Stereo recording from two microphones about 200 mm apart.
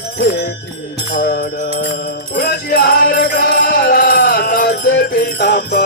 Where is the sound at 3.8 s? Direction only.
45° left (ahead or behind).